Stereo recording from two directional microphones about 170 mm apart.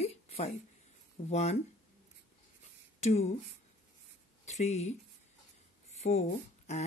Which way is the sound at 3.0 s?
40° left (ahead or behind).